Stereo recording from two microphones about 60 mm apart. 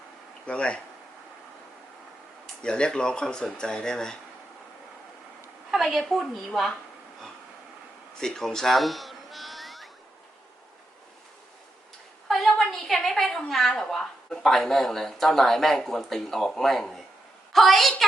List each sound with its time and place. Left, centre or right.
0.4 s speech: centre
2.6 s speech: centre
5.7 s a woman's voice: centre
8.2 s music: centre
12.3 s a sound: centre
13.5 s a woman's voice: centre